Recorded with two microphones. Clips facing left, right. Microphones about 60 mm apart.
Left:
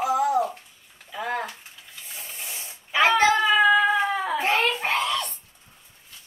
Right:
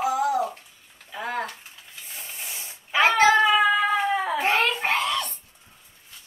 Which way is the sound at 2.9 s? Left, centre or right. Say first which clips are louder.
Right 1 dB; centre.